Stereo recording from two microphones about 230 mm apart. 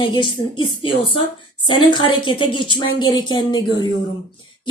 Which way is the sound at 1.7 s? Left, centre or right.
Left.